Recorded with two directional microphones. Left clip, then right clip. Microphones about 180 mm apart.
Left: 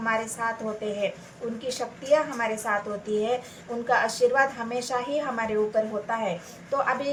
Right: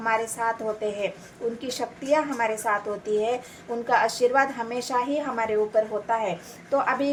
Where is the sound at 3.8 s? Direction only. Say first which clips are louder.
Right 1 dB; 40° right (ahead or behind).